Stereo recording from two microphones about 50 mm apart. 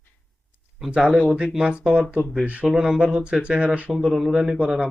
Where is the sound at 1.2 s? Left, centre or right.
Centre.